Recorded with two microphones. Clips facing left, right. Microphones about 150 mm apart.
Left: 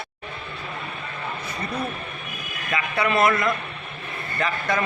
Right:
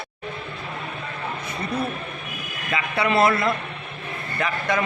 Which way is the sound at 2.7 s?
25° right (ahead or behind).